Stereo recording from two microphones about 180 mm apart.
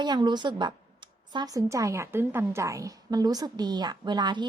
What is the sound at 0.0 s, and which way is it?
A woman's voice, 25° right (ahead or behind).